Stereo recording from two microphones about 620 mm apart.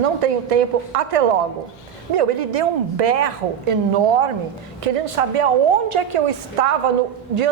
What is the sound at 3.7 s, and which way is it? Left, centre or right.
A woman's voice, right.